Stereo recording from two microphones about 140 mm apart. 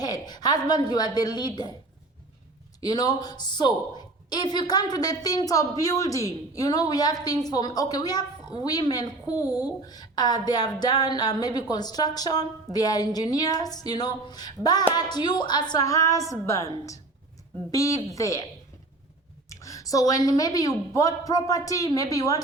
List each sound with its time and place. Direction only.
0.0 s a woman's voice: 30° left (ahead or behind)
2.8 s a woman's voice: 25° left (ahead or behind)
19.5 s a woman's voice: 25° left (ahead or behind)